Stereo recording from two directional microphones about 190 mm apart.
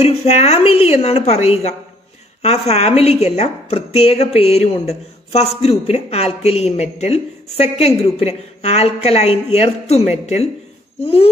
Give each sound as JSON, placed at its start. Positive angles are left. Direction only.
{"t": 0.0, "sound": "speech", "side_deg": 30}